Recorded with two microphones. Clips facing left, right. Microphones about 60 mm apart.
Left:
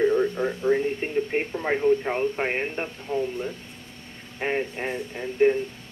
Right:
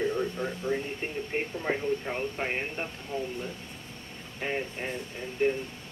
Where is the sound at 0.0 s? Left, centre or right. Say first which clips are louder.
Left 8 dB; left.